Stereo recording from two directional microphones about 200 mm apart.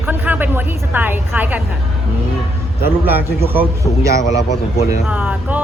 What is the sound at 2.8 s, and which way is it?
Speech, 10° right (ahead or behind).